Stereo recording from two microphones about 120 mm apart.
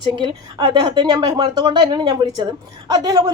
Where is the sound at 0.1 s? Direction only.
40° right (ahead or behind).